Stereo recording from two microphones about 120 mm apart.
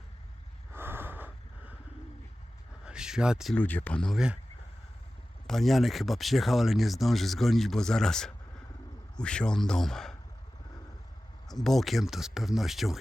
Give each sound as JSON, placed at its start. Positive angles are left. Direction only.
{"t": 0.7, "sound": "snort", "side_deg": -20}
{"t": 2.8, "sound": "a sound", "side_deg": -5}
{"t": 3.5, "sound": "speech", "side_deg": 15}
{"t": 5.5, "sound": "speech", "side_deg": 0}
{"t": 11.5, "sound": "speech", "side_deg": 0}